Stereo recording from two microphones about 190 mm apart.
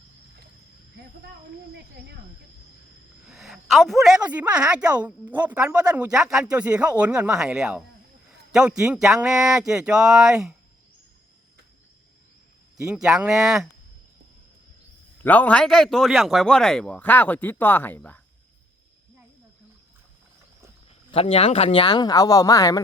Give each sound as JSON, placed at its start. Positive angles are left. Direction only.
{"t": 3.2, "sound": "a woman's voice", "side_deg": 0}
{"t": 12.7, "sound": "a woman's voice", "side_deg": -5}
{"t": 15.2, "sound": "a man's voice", "side_deg": 10}
{"t": 21.1, "sound": "speech", "side_deg": 30}